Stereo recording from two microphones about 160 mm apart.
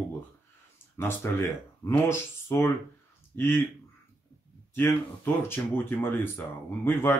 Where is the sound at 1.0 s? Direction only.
15° left (ahead or behind).